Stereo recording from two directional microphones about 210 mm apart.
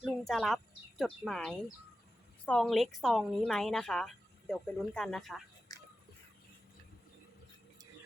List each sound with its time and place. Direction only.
0.0 s a woman's voice: centre (ahead or behind)
5.7 s music: 15° left (ahead or behind)